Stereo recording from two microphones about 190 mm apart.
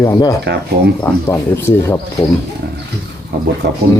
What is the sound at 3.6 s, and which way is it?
Speech, 65° right (ahead or behind).